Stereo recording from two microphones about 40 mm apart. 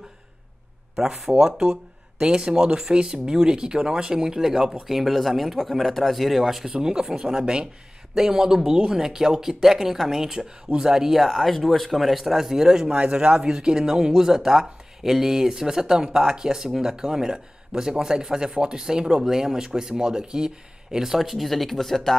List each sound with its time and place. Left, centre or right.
0.9 s speech: centre
1.3 s speech: centre
6.7 s speech: centre
12.9 s speech: right; by 22.1 s centre